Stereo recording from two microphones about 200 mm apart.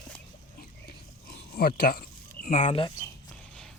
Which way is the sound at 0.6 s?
50° left (ahead or behind).